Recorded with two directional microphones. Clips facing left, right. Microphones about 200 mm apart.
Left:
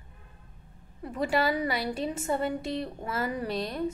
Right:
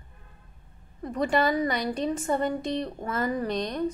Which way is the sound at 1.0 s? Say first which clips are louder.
Right 2 dB; 5° left (ahead or behind).